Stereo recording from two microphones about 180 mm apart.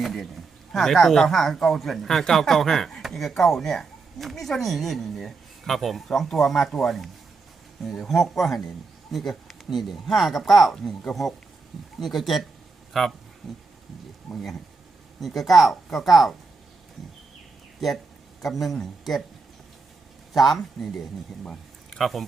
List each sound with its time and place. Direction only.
0.0 s speech: centre (ahead or behind)
17.7 s speech: centre (ahead or behind)
20.3 s speech: centre (ahead or behind)
21.4 s a sound: centre (ahead or behind)